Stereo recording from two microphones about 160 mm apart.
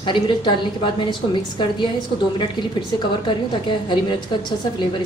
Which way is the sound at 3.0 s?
30° left (ahead or behind).